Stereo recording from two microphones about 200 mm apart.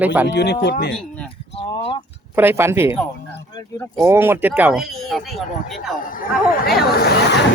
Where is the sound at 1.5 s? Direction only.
30° left (ahead or behind).